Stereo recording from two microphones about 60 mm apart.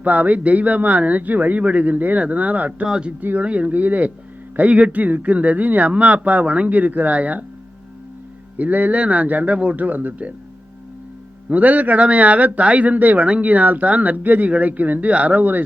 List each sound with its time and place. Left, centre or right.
0.0 s a man's voice: right
2.8 s speech: centre
3.2 s a man's voice: right
8.5 s a man's voice: right
11.4 s a man's voice: right